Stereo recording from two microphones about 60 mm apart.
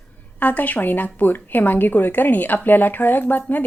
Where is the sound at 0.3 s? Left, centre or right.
Left.